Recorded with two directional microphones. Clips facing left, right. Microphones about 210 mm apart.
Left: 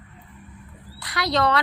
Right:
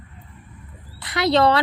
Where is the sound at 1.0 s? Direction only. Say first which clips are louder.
Right 5 dB; 25° right (ahead or behind).